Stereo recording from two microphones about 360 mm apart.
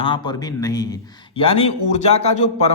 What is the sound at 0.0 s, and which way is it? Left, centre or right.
Speech, centre.